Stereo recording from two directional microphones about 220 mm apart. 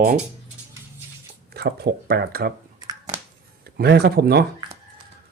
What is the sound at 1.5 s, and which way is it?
Speech, 45° right (ahead or behind).